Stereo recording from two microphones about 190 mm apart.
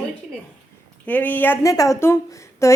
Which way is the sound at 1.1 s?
10° left (ahead or behind).